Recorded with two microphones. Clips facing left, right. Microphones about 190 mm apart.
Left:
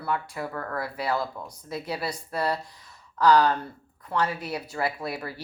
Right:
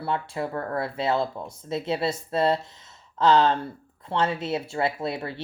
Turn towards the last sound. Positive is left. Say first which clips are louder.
# right 3 dB
turn(degrees=-25)  # may be behind; listen again after turning